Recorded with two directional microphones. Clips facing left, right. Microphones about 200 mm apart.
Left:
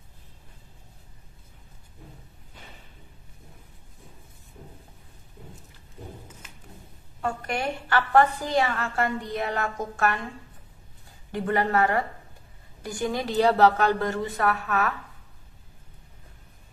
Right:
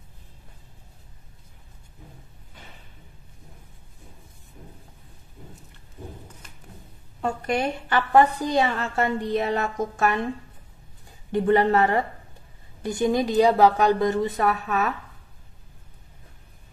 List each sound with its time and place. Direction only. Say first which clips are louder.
7.2 s a woman's voice: right 4 dB; 20° right (ahead or behind)
11.3 s a woman's voice: right 5 dB; 25° right (ahead or behind)